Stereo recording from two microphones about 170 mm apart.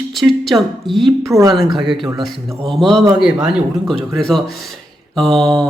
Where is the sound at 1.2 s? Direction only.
20° right (ahead or behind).